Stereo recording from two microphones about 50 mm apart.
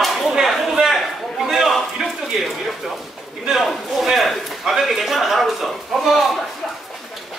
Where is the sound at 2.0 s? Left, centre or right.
Centre.